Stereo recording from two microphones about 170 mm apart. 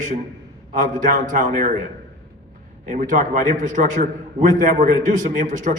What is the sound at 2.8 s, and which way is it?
A man's voice, 50° right (ahead or behind).